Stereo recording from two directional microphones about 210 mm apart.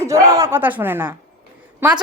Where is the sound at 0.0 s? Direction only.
15° right (ahead or behind).